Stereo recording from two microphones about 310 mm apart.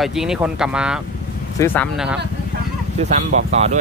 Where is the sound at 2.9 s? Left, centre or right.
Right.